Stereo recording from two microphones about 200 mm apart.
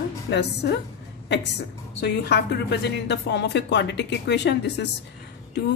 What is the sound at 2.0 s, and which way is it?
Speech, 55° left (ahead or behind).